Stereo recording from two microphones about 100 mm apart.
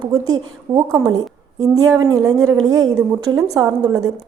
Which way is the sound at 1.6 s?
35° right (ahead or behind).